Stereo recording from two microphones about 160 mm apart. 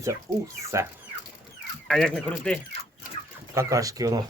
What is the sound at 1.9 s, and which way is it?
Speech, 5° left (ahead or behind).